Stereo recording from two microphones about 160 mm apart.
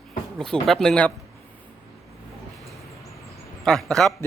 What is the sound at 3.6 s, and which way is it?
Speech, 5° left (ahead or behind).